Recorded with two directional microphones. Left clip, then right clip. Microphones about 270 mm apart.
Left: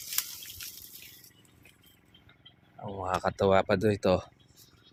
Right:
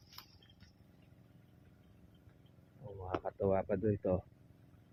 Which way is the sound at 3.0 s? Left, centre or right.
Left.